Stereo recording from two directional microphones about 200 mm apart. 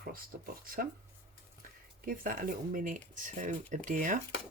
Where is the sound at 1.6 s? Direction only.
45° right (ahead or behind).